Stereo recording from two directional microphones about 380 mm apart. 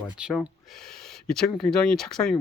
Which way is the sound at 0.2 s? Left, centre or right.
Centre.